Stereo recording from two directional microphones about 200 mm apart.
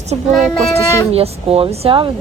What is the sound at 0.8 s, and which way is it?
Speech, 15° left (ahead or behind).